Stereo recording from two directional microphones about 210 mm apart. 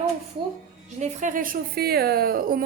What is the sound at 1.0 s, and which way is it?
A woman's voice, 35° right (ahead or behind).